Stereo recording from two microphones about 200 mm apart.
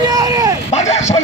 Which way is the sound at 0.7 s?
35° left (ahead or behind).